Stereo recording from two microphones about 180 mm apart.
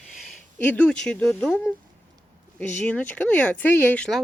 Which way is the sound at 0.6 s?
10° left (ahead or behind).